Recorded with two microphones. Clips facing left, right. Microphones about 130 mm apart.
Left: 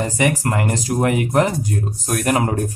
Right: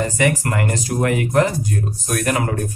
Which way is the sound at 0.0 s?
20° left (ahead or behind).